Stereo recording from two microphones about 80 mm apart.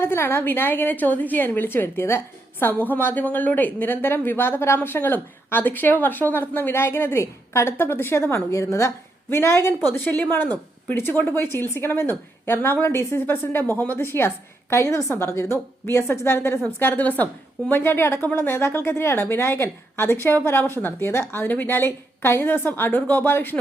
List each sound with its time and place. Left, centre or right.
0.0 s a woman's voice: left
9.9 s a woman's voice: left